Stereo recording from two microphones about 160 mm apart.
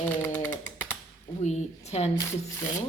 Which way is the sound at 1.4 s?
45° left (ahead or behind).